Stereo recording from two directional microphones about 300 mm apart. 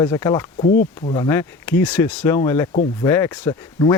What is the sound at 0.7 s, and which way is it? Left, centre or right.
Speech, left.